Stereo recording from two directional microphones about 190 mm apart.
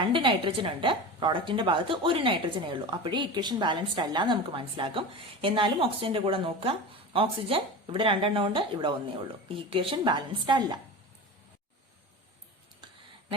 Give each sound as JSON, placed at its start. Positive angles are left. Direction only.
{"t": 0.1, "sound": "a woman's voice", "side_deg": -25}